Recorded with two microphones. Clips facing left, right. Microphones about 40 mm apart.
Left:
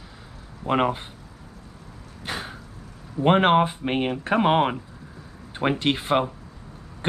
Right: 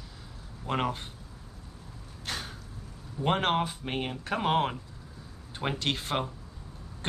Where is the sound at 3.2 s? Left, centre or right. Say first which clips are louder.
Left 9 dB; left.